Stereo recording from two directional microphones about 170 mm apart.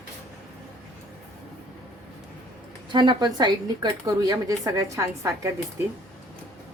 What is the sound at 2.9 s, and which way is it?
A woman's voice, 25° right (ahead or behind).